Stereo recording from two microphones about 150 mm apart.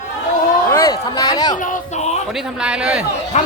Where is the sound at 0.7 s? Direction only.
20° left (ahead or behind).